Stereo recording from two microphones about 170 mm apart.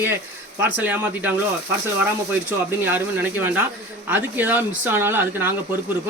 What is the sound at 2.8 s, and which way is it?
Speech, 10° right (ahead or behind).